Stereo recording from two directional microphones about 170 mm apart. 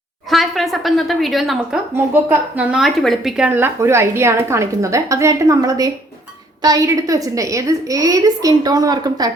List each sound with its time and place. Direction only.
0.3 s a woman's voice: centre (ahead or behind); by 9.3 s 25° right (ahead or behind)